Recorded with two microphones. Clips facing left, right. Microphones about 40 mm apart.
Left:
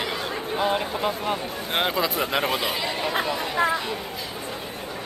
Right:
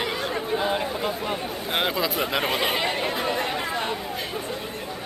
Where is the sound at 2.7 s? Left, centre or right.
Right.